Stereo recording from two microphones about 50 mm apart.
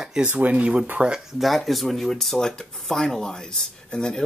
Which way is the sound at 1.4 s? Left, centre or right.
Centre.